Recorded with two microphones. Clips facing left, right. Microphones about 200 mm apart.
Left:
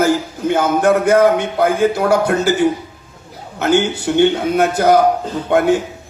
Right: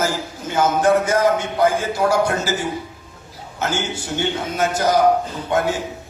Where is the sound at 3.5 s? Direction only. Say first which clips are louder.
Left 9 dB; 60° left (ahead or behind).